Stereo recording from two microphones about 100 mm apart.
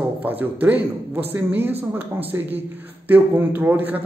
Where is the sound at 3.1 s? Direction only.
20° right (ahead or behind).